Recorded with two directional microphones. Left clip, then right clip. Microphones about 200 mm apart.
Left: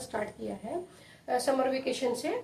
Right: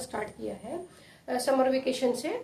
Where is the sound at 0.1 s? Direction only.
20° right (ahead or behind).